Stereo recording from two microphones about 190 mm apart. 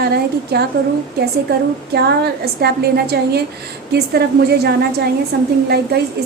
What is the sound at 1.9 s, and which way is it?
A woman's voice, 60° right (ahead or behind).